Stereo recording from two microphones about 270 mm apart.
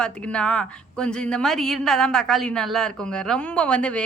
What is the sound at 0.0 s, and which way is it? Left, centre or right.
A woman's voice, centre.